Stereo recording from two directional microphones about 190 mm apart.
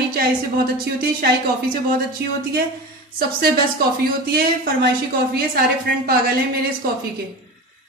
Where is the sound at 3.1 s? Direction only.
50° right (ahead or behind).